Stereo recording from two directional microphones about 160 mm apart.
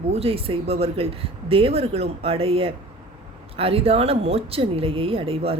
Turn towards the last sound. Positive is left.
turn(degrees=-35)  # may be behind; listen again after turning